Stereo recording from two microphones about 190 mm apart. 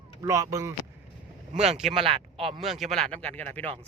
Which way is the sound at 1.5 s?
35° right (ahead or behind).